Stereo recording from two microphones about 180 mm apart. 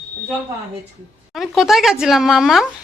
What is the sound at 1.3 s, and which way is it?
Speech, centre (ahead or behind).